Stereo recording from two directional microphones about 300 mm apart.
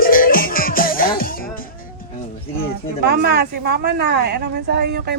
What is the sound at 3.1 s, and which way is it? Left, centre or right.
A woman's voice, right.